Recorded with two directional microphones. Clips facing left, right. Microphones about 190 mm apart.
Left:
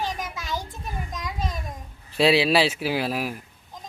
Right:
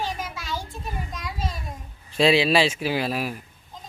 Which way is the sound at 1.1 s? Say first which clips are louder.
Left 1 dB; 20° left (ahead or behind).